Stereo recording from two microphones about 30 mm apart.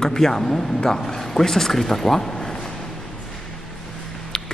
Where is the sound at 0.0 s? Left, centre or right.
Centre.